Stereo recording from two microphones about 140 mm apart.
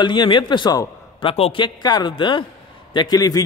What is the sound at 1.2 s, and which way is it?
A man's voice, 40° left (ahead or behind).